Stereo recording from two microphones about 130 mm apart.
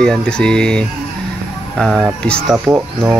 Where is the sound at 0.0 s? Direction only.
5° left (ahead or behind).